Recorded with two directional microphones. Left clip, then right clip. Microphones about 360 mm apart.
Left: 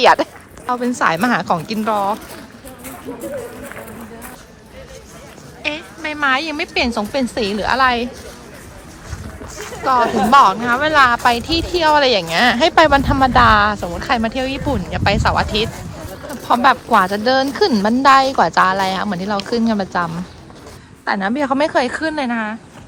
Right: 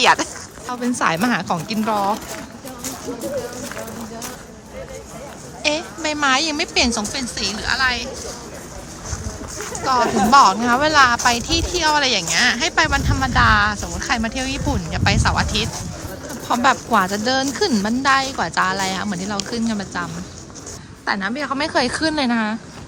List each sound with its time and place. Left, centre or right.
0.0 s a woman's voice: centre
5.6 s a woman's voice: centre
9.8 s a woman's voice: centre